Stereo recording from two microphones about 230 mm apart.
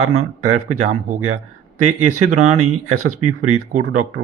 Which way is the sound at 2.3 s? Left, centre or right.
Right.